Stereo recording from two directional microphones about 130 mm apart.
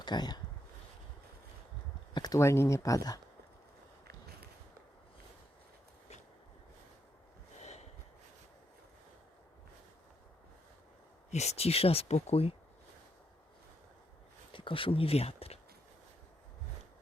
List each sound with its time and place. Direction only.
0.0 s speech: 35° left (ahead or behind)
2.1 s speech: 30° left (ahead or behind)
7.6 s snort: 60° left (ahead or behind)
11.3 s speech: 60° left (ahead or behind)
14.5 s speech: 40° left (ahead or behind)